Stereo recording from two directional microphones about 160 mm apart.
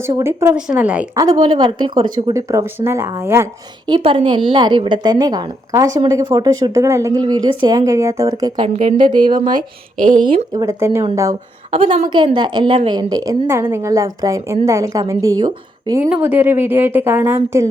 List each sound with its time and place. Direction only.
0.0 s a woman's voice: 15° right (ahead or behind)
1.1 s a woman's voice: 25° right (ahead or behind)
3.8 s a woman's voice: 30° right (ahead or behind)
10.0 s a woman's voice: 55° right (ahead or behind)
10.2 s a woman's voice: 25° right (ahead or behind)
11.7 s a woman's voice: 35° right (ahead or behind)
16.2 s a woman's voice: 10° right (ahead or behind)